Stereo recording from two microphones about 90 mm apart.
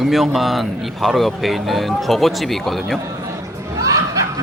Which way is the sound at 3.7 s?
40° right (ahead or behind).